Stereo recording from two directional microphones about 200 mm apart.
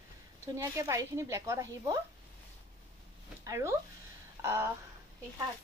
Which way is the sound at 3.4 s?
15° right (ahead or behind).